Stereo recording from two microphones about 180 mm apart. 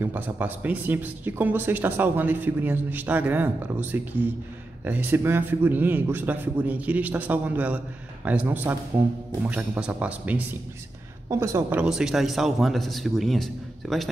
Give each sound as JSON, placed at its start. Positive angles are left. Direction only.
{"t": 0.0, "sound": "a man's voice", "side_deg": -10}
{"t": 11.8, "sound": "a man's voice", "side_deg": -5}